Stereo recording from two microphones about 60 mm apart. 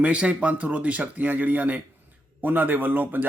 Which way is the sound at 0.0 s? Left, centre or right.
Right.